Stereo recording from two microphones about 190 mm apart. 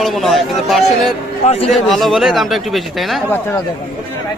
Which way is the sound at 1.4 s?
35° left (ahead or behind).